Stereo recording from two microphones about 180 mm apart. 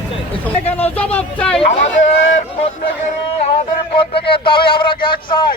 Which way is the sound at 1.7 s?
40° left (ahead or behind).